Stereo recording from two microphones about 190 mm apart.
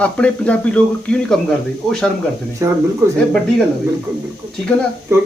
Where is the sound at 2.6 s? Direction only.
15° right (ahead or behind).